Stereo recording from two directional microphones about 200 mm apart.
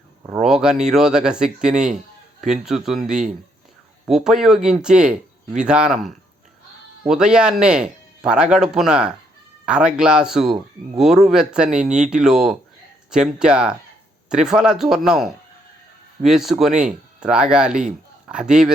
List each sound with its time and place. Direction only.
0.3 s speech: centre (ahead or behind)